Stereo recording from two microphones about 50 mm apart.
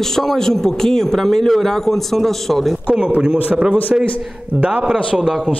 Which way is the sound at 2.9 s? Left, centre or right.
Right.